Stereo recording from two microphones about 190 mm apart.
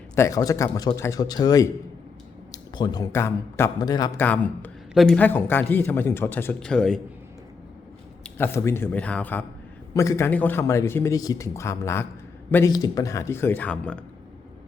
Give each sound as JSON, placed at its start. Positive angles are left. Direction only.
{"t": 0.2, "sound": "a man's voice", "side_deg": 15}
{"t": 8.2, "sound": "a man's voice", "side_deg": 10}